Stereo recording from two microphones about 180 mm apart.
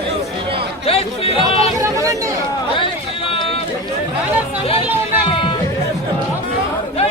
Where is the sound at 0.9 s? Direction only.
30° left (ahead or behind).